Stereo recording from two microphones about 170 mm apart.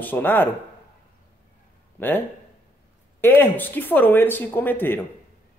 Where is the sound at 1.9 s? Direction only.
10° left (ahead or behind).